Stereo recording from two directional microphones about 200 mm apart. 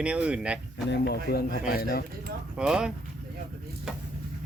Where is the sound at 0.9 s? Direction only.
55° left (ahead or behind).